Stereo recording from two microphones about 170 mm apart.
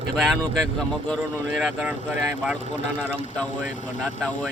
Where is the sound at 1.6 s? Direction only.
5° right (ahead or behind).